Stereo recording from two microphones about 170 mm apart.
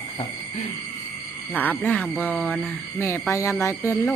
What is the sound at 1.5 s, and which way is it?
Speech, 10° left (ahead or behind).